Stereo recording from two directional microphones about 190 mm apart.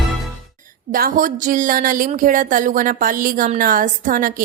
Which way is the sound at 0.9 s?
50° right (ahead or behind).